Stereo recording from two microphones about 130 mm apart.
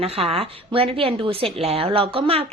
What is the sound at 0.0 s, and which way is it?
A woman's voice, 50° right (ahead or behind).